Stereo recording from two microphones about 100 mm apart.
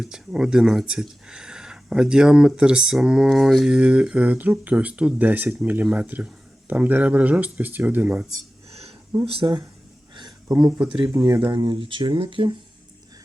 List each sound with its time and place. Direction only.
0.0 s speech: 5° right (ahead or behind)
9.2 s speech: 70° right (ahead or behind)
10.5 s speech: 40° right (ahead or behind)
10.8 s speech: 10° right (ahead or behind)
11.1 s speech: 30° right (ahead or behind)
11.5 s speech: 55° right (ahead or behind)